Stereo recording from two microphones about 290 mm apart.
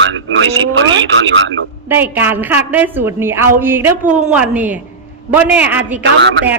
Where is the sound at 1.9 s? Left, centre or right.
Centre.